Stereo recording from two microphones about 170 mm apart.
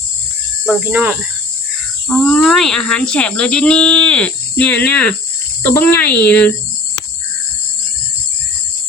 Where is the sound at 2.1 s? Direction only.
5° left (ahead or behind).